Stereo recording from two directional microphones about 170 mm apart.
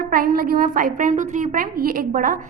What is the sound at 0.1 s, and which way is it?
A woman's voice, 55° right (ahead or behind).